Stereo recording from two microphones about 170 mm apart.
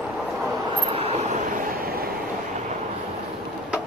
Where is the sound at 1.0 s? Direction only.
35° right (ahead or behind).